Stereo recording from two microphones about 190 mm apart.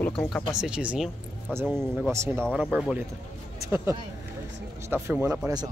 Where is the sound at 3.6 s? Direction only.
15° right (ahead or behind).